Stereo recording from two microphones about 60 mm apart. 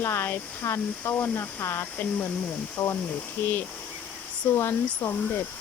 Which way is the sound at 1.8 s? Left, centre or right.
Left.